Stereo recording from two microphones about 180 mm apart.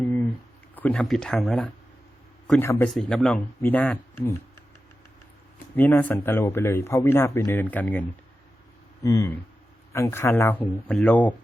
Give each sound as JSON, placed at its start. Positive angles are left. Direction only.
{"t": 0.0, "sound": "a sound", "side_deg": 10}
{"t": 0.8, "sound": "speech", "side_deg": 5}
{"t": 2.5, "sound": "speech", "side_deg": 15}
{"t": 2.9, "sound": "speech", "side_deg": 0}
{"t": 5.7, "sound": "speech", "side_deg": 10}